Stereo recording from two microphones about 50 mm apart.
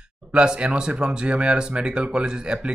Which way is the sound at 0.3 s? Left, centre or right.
Right.